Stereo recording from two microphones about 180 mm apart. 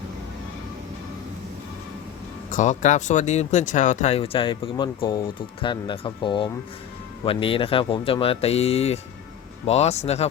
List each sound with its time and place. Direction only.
2.5 s speech: 45° left (ahead or behind)